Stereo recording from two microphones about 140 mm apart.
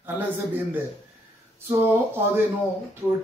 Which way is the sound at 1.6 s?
15° right (ahead or behind).